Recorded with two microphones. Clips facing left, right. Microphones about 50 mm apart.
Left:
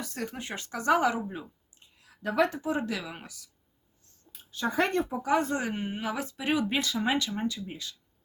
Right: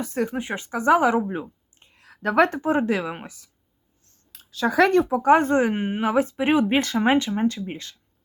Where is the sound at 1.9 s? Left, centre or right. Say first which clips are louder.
Right 8 dB; right.